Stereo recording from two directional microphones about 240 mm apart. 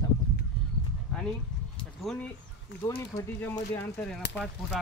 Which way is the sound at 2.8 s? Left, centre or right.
Centre.